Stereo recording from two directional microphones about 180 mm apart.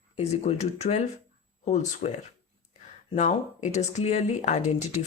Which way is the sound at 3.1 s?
40° left (ahead or behind).